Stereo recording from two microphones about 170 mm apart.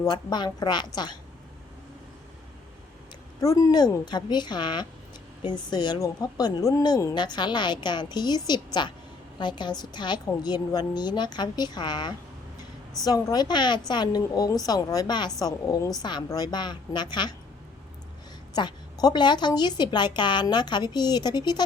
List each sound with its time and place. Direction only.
0.0 s a woman's voice: 25° left (ahead or behind)
3.4 s a woman's voice: 20° left (ahead or behind)
18.5 s a woman's voice: 25° left (ahead or behind)